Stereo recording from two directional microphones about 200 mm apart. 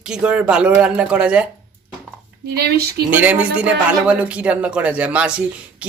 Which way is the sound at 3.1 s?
10° right (ahead or behind).